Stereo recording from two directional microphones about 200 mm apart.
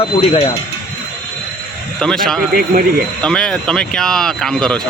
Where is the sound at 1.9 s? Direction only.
5° left (ahead or behind).